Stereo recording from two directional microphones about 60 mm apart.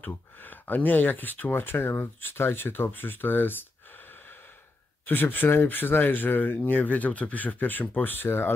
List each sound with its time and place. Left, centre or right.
0.0 s speech: left
5.0 s speech: left